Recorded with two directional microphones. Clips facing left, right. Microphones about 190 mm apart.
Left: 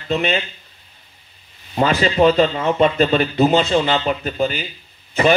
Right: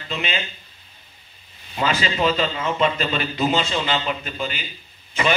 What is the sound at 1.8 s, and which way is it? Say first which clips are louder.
A man's voice: left 7 dB; 40° left (ahead or behind).